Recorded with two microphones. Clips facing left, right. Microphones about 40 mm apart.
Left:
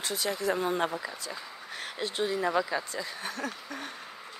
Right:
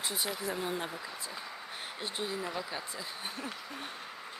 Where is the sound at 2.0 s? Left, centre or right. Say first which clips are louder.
Left 7 dB; left.